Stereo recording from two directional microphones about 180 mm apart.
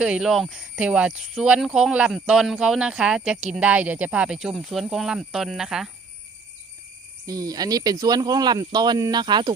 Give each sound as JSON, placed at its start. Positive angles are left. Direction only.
{"t": 0.0, "sound": "speech", "side_deg": -5}
{"t": 7.3, "sound": "speech", "side_deg": -20}